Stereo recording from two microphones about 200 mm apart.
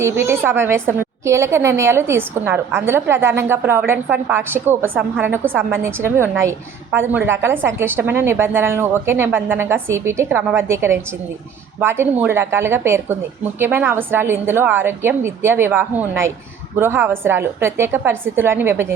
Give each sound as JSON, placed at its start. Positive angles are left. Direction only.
{"t": 0.0, "sound": "a woman's voice", "side_deg": -10}